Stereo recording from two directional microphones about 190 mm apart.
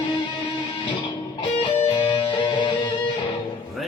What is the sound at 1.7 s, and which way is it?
Music, 20° left (ahead or behind).